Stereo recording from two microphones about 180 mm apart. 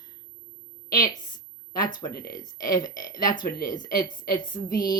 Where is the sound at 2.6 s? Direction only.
20° left (ahead or behind).